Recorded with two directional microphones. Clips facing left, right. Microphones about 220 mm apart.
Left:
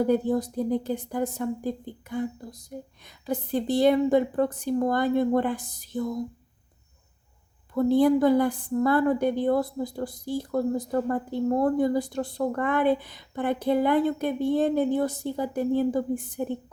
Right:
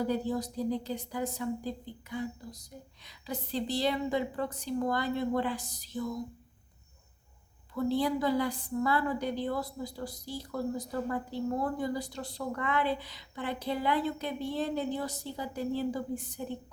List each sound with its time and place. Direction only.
0.0 s a woman's voice: 55° left (ahead or behind)
7.7 s a woman's voice: 50° left (ahead or behind)